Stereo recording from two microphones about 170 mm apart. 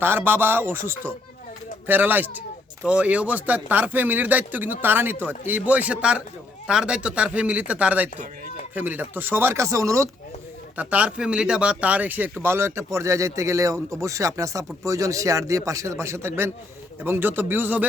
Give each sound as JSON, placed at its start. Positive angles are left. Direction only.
{"t": 0.0, "sound": "speech", "side_deg": -10}
{"t": 10.8, "sound": "a man's voice", "side_deg": -5}